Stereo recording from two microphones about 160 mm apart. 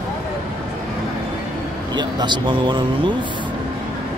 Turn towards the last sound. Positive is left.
turn(degrees=-30)  # may be behind; listen again after turning